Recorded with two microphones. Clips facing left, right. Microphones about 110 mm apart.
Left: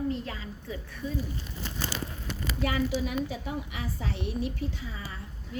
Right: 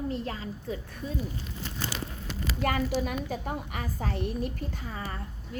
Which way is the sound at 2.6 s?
50° right (ahead or behind).